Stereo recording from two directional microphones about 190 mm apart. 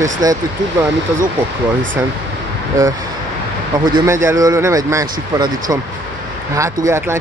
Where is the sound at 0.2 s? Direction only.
20° right (ahead or behind).